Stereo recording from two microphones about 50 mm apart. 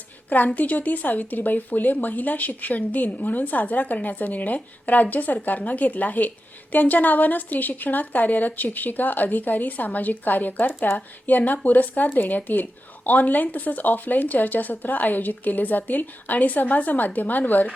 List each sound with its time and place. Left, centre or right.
0.3 s speech: left